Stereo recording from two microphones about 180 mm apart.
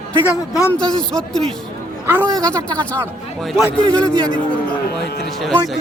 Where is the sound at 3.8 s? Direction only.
25° right (ahead or behind).